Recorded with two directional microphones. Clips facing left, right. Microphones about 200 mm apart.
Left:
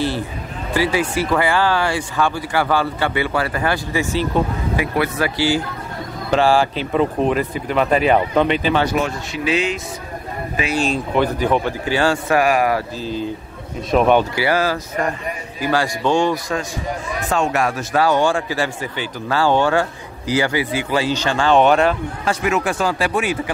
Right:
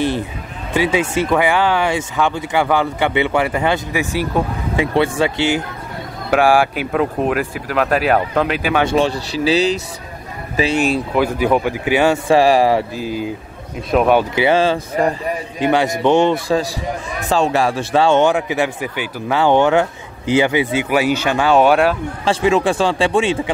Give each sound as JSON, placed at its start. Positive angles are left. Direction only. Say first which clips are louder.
{"t": 0.7, "sound": "speech", "louder": "right 2 dB", "side_deg": -20}
{"t": 4.7, "sound": "speech", "louder": "right 5 dB", "side_deg": -25}
{"t": 6.3, "sound": "speech", "louder": "right 2 dB", "side_deg": -15}
{"t": 8.9, "sound": "speech", "louder": "right 5 dB", "side_deg": -30}
{"t": 10.9, "sound": "a man's voice", "louder": "right 2 dB", "side_deg": -10}
{"t": 12.9, "sound": "a man's voice", "louder": "right 2 dB", "side_deg": -10}
{"t": 14.3, "sound": "speech", "louder": "right 4 dB", "side_deg": -20}
{"t": 22.2, "sound": "speech", "louder": "right 5 dB", "side_deg": -30}